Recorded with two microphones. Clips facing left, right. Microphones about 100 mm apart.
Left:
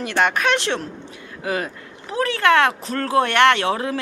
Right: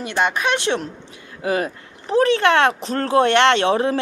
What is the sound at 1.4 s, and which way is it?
Speech, 30° right (ahead or behind).